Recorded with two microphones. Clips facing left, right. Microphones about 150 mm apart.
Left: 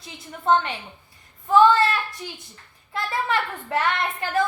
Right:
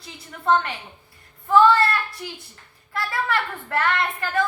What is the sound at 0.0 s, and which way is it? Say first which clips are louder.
Speech: even; 20° left (ahead or behind).